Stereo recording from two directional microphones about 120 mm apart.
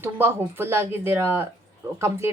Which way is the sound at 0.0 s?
20° right (ahead or behind).